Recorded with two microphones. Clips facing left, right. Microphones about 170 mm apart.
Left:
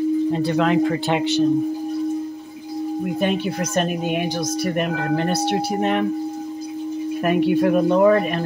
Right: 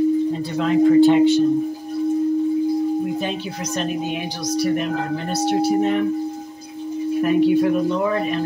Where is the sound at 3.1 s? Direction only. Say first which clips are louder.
Left 4 dB; 55° left (ahead or behind).